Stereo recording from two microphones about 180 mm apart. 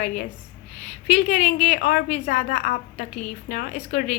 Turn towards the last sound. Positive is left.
turn(degrees=40)  # may be behind; listen again after turning